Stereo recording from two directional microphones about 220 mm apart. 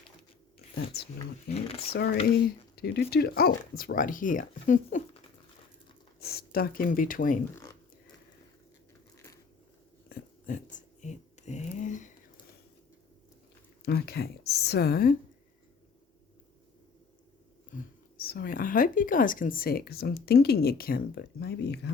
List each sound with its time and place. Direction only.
1.5 s speech: 25° left (ahead or behind)
1.9 s speech: 45° left (ahead or behind)
6.1 s speech: 45° left (ahead or behind)
9.1 s a sound: 15° left (ahead or behind)
10.1 s a sound: 35° left (ahead or behind)
13.8 s speech: 45° left (ahead or behind)
18.2 s speech: 45° left (ahead or behind)